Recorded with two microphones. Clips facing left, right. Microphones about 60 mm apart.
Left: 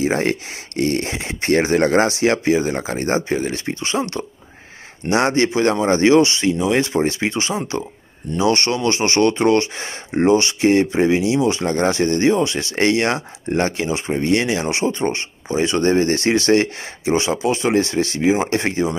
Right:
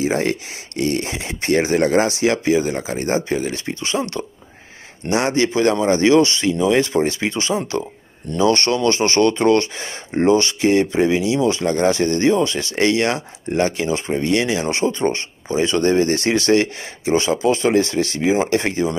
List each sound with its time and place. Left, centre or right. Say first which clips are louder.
0.0 s speech: left 1 dB; left